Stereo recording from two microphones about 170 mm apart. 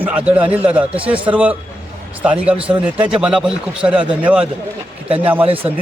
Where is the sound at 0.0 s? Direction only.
10° right (ahead or behind).